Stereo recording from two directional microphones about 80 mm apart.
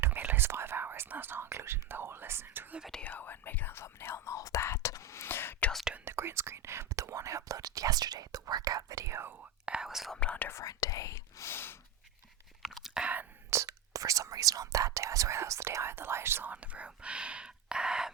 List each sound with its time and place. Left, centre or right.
0.0 s speech: right
3.0 s speech: left
6.1 s speech: right
9.6 s speech: centre
10.2 s speech: centre
10.5 s speech: left
12.6 s whispering: centre
13.5 s speech: right; by 18.1 s centre